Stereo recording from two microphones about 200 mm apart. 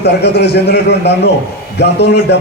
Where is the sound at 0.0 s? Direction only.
55° left (ahead or behind).